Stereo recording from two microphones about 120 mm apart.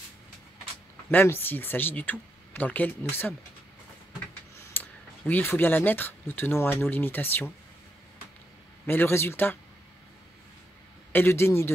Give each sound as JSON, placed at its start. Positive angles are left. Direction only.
{"t": 1.1, "sound": "speech", "side_deg": 20}
{"t": 4.7, "sound": "a sound", "side_deg": 15}
{"t": 5.3, "sound": "speech", "side_deg": 20}
{"t": 8.8, "sound": "speech", "side_deg": 20}
{"t": 11.1, "sound": "speech", "side_deg": 20}